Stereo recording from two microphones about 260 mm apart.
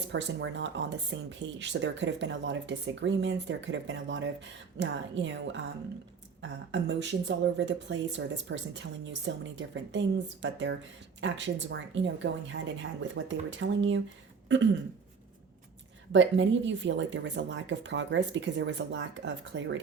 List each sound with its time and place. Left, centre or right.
0.1 s speech: right
14.4 s a sound: right
16.1 s speech: right